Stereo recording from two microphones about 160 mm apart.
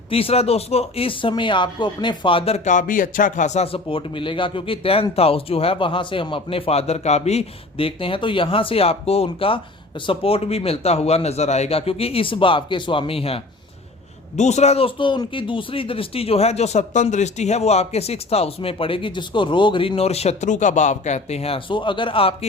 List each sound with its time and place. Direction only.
0.1 s speech: 35° left (ahead or behind)